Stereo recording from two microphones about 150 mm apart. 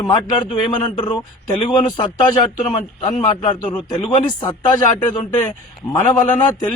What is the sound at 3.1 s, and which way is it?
Speech, 55° left (ahead or behind).